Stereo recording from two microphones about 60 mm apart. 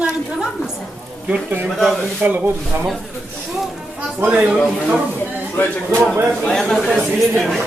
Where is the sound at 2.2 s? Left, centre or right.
Right.